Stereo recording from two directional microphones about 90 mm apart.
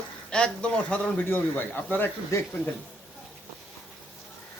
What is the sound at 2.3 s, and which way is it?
Speech, 30° left (ahead or behind).